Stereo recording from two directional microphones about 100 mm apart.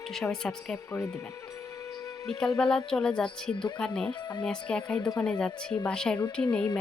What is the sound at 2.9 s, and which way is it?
Speech, 5° left (ahead or behind).